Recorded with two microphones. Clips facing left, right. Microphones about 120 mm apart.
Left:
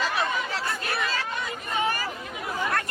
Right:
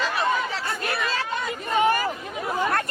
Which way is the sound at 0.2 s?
Centre (ahead or behind).